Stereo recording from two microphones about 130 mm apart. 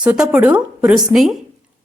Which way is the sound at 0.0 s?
10° right (ahead or behind).